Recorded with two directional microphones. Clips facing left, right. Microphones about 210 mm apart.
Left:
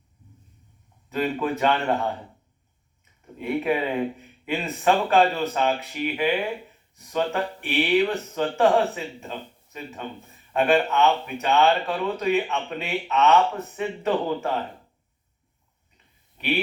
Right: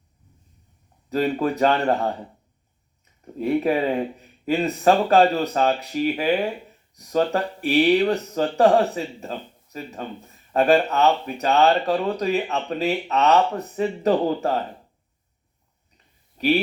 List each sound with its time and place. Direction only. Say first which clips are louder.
1.1 s speech: right 3 dB; 35° right (ahead or behind)
3.3 s speech: right 4 dB; 35° right (ahead or behind)